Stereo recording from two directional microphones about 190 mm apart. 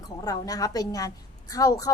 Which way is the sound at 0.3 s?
20° left (ahead or behind).